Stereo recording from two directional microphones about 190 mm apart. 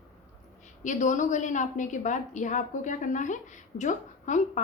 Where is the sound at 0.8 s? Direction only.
40° left (ahead or behind).